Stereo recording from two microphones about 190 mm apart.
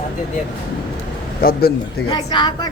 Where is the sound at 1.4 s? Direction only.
50° left (ahead or behind).